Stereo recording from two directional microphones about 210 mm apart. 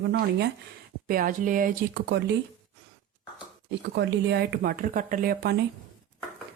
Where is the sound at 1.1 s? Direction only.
40° right (ahead or behind).